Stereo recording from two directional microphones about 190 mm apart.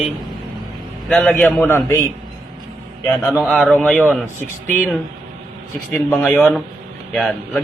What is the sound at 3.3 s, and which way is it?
Speech, 15° left (ahead or behind).